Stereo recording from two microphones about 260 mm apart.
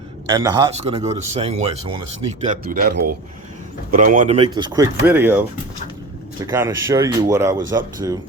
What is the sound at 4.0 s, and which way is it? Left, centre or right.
Speech, right.